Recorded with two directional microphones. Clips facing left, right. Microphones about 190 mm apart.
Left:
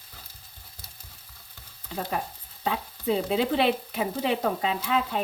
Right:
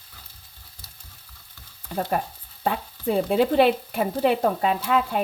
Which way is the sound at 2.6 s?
50° right (ahead or behind).